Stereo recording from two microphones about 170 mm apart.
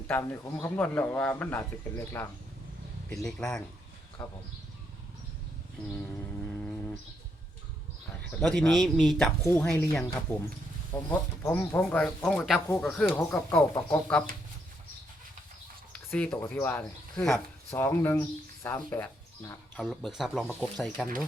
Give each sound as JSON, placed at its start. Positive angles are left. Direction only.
{"t": 0.1, "sound": "speech", "side_deg": 15}
{"t": 3.2, "sound": "speech", "side_deg": 5}
{"t": 6.6, "sound": "a sound", "side_deg": 10}
{"t": 8.4, "sound": "speech", "side_deg": 5}
{"t": 9.4, "sound": "speech", "side_deg": 15}
{"t": 15.9, "sound": "speech", "side_deg": 5}
{"t": 19.7, "sound": "speech", "side_deg": 0}